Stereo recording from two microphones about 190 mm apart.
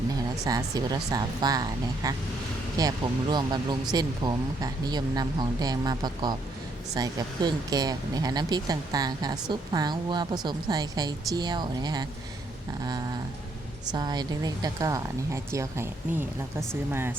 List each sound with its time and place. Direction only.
0.4 s speech: 20° right (ahead or behind)
2.7 s speech: 20° right (ahead or behind)
13.9 s speech: 20° right (ahead or behind)